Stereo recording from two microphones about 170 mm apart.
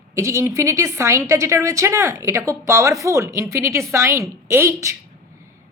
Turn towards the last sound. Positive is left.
turn(degrees=-15)  # may be behind; listen again after turning